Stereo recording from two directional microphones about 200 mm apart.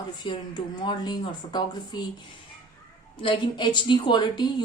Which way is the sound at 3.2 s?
25° left (ahead or behind).